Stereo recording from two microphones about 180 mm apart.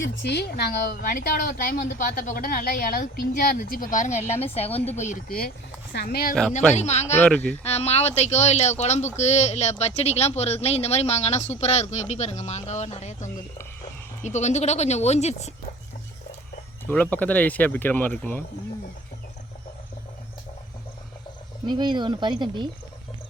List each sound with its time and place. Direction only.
0.0 s speech: 75° left (ahead or behind); by 5.5 s 50° left (ahead or behind)
5.9 s speech: 65° left (ahead or behind)
6.7 s speech: 40° left (ahead or behind)
7.2 s speech: 10° left (ahead or behind)
7.6 s speech: 35° left (ahead or behind)
16.8 s speech: 10° left (ahead or behind)
21.7 s speech: 25° right (ahead or behind)